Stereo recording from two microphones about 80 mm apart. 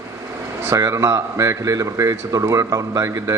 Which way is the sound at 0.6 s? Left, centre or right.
Right.